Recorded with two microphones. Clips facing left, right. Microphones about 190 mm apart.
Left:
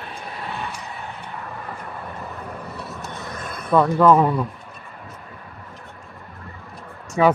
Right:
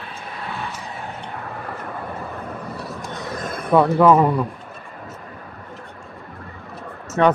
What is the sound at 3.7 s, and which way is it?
Speech, 5° right (ahead or behind).